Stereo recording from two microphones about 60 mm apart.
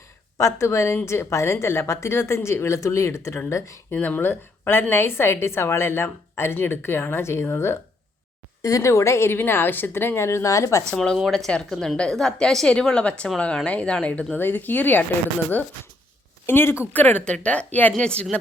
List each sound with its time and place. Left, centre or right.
0.3 s speech: left
3.9 s a woman's voice: left
8.6 s speech: left
10.9 s speech: centre
14.3 s a woman's voice: left
16.5 s a woman's voice: left
16.9 s a woman's voice: left
17.2 s a woman's voice: centre
17.9 s speech: centre